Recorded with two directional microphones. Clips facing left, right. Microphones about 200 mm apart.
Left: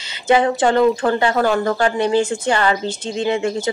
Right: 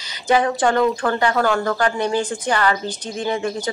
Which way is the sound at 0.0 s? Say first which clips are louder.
Left 3 dB; 25° left (ahead or behind).